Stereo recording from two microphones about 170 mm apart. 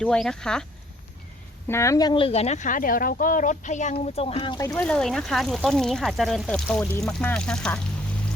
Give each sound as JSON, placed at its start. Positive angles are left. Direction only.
{"t": 0.0, "sound": "speech", "side_deg": 5}
{"t": 1.6, "sound": "speech", "side_deg": 15}
{"t": 4.9, "sound": "speech", "side_deg": 5}